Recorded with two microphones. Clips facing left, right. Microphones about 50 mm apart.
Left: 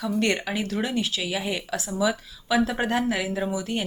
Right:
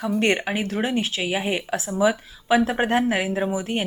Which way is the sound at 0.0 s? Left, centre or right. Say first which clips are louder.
Right 3 dB; right.